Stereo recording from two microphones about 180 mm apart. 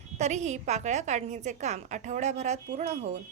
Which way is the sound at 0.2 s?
40° right (ahead or behind).